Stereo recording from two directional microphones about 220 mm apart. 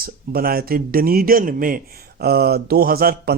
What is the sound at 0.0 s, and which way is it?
Speech, 45° right (ahead or behind).